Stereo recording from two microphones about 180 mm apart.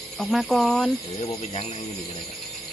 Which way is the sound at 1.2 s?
35° left (ahead or behind).